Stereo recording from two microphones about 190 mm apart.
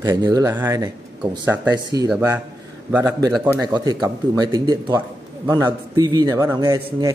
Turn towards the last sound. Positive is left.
turn(degrees=-20)  # may be behind; listen again after turning